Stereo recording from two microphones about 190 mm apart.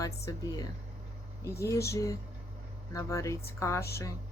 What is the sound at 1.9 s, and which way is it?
Speech, 15° left (ahead or behind).